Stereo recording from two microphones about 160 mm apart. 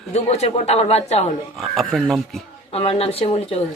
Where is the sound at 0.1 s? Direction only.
40° left (ahead or behind).